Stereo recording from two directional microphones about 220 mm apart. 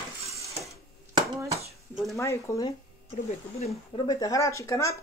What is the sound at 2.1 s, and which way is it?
Speech, 15° left (ahead or behind).